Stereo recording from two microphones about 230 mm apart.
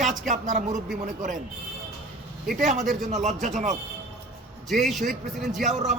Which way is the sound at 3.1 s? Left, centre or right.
Right.